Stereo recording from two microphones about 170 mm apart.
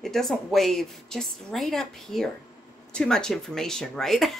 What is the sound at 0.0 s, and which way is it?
A woman's voice, centre (ahead or behind).